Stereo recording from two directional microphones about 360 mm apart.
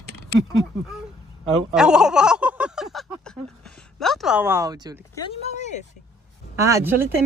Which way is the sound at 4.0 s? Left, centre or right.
Centre.